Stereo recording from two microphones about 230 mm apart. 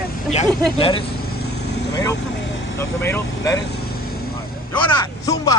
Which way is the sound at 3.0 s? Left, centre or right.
Centre.